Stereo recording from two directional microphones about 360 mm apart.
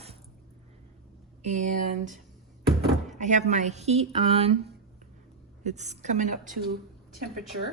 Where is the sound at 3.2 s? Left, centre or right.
Centre.